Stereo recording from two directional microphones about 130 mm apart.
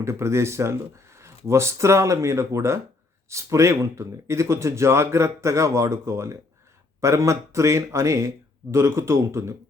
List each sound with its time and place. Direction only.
0.0 s speech: 20° right (ahead or behind)